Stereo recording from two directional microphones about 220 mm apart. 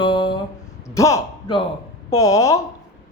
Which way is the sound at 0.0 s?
20° left (ahead or behind).